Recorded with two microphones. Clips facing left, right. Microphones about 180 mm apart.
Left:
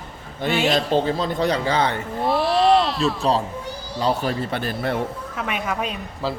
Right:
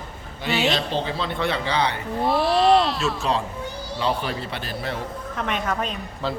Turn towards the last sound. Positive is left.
turn(degrees=10)  # may be behind; listen again after turning